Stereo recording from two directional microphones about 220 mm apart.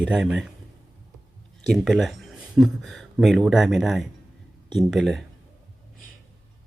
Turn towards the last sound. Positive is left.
turn(degrees=0)  # may be behind; listen again after turning